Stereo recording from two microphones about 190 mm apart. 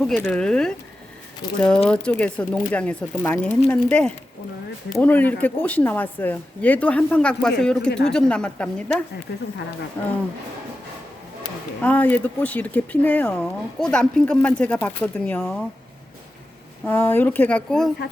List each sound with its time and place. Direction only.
0.0 s a woman's voice: 5° left (ahead or behind)
1.4 s speech: 20° left (ahead or behind)
1.9 s a woman's voice: 5° left (ahead or behind)
7.9 s a woman's voice: 65° left (ahead or behind)
8.1 s a woman's voice: 5° left (ahead or behind)
9.3 s a woman's voice: 60° left (ahead or behind)
10.0 s speech: 10° left (ahead or behind)
11.8 s speech: 10° left (ahead or behind)
16.8 s speech: 10° left (ahead or behind)